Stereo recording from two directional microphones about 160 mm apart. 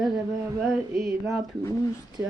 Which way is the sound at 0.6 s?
Centre (ahead or behind).